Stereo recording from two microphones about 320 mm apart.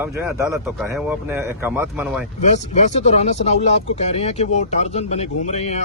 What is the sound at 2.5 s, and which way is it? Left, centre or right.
Speech, left.